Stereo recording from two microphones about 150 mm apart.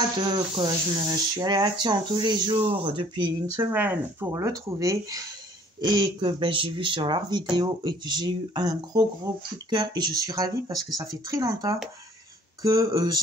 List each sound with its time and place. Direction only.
0.2 s speech: 30° right (ahead or behind)
3.5 s speech: 10° right (ahead or behind)